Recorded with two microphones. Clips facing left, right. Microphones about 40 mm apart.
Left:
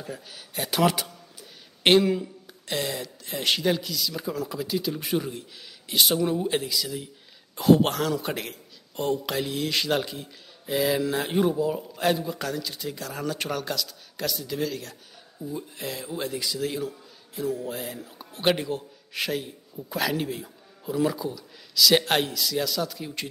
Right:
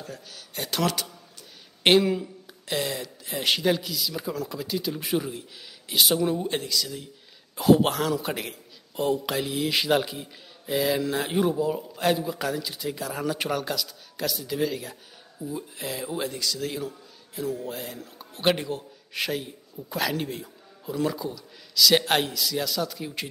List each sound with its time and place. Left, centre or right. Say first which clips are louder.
0.0 s a man's voice: left 2 dB; centre
7.5 s a man's voice: even; centre